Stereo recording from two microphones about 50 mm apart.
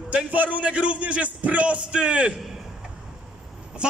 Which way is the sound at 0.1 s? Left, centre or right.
Right.